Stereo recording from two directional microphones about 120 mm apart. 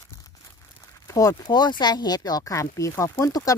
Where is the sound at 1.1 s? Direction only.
30° left (ahead or behind).